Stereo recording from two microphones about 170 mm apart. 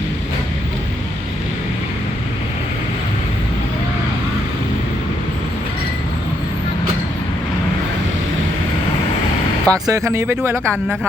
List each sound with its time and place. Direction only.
9.6 s speech: 20° right (ahead or behind)